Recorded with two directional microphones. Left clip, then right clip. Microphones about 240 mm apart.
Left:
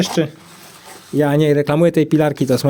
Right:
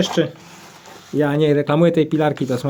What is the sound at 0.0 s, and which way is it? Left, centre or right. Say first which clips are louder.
Speech: even; left.